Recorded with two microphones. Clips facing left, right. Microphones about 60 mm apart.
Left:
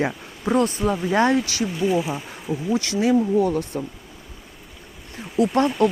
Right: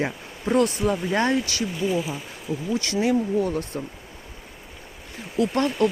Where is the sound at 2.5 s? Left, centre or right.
Left.